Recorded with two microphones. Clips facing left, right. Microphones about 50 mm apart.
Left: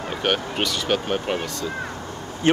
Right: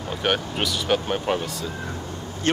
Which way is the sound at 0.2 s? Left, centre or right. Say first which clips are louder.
Left 1 dB; centre.